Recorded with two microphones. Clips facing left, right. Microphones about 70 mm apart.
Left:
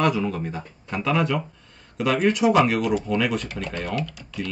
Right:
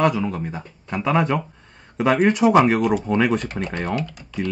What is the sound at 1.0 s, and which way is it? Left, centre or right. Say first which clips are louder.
Speech: right 3 dB; right.